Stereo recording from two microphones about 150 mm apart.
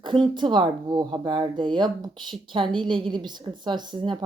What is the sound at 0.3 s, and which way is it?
A woman's voice, 30° right (ahead or behind).